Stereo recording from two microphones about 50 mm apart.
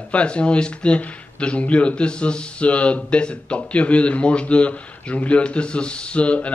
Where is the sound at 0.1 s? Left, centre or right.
Left.